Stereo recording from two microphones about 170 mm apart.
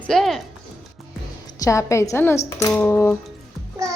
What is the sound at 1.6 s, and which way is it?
A woman's voice, 20° left (ahead or behind).